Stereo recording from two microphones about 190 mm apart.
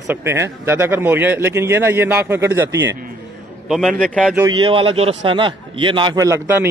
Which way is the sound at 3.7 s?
Centre (ahead or behind).